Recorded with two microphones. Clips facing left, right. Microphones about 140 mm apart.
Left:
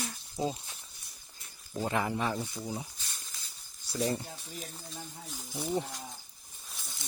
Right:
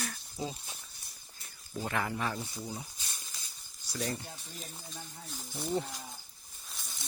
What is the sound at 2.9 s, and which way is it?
Snake, 15° right (ahead or behind).